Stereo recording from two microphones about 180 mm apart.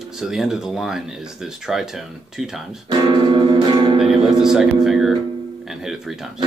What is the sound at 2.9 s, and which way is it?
Music, 25° right (ahead or behind).